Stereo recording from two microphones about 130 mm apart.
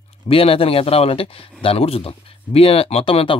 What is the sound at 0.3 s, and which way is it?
Speech, 45° left (ahead or behind).